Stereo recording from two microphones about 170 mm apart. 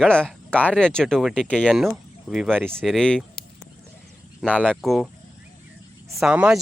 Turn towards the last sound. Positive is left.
turn(degrees=-5)  # may be behind; listen again after turning